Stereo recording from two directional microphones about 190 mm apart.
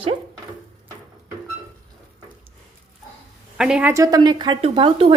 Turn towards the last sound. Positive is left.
turn(degrees=-30)  # may be behind; listen again after turning